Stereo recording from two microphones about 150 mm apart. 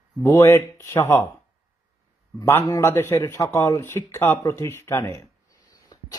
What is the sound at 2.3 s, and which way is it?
A man's voice, 20° left (ahead or behind).